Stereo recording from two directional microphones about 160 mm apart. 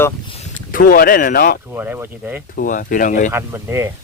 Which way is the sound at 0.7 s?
65° left (ahead or behind).